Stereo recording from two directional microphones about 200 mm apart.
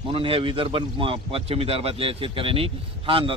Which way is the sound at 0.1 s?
25° right (ahead or behind).